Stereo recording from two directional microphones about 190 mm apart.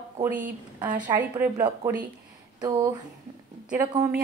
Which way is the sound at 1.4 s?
10° right (ahead or behind).